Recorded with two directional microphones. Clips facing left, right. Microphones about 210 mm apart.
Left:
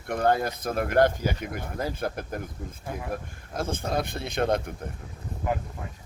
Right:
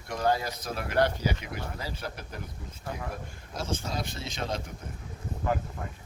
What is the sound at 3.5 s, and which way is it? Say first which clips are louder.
Speech: left 5 dB; 55° left (ahead or behind).